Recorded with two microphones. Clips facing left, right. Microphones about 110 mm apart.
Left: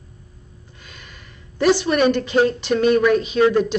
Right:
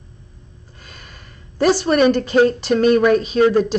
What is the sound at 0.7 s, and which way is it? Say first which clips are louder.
Speech: right 1 dB; 40° right (ahead or behind).